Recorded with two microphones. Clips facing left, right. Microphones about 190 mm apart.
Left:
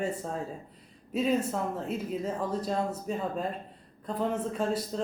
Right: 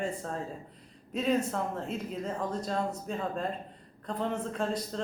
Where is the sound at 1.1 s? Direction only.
5° left (ahead or behind).